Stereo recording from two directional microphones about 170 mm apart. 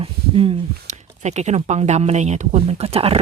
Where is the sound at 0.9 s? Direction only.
40° right (ahead or behind).